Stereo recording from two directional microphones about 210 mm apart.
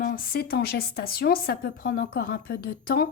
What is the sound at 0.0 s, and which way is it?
A woman's voice, 40° left (ahead or behind).